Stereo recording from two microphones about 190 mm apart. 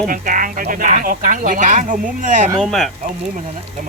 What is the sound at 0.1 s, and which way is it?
Speech, 45° right (ahead or behind).